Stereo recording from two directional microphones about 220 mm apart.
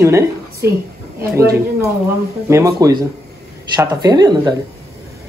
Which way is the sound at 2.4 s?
15° right (ahead or behind).